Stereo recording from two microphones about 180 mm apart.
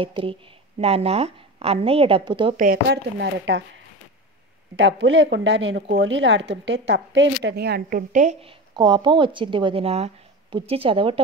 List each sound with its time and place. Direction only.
0.0 s a woman's voice: 30° right (ahead or behind)
2.5 s speech: 50° right (ahead or behind)
2.9 s speech: 65° right (ahead or behind)
4.7 s a woman's voice: 90° right; by 8.0 s 60° right (ahead or behind)
8.1 s a woman's voice: 40° right (ahead or behind)
8.7 s a woman's voice: 25° right (ahead or behind)